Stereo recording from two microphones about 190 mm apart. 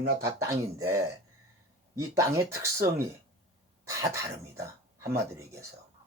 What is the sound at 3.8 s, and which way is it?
Speech, 15° right (ahead or behind).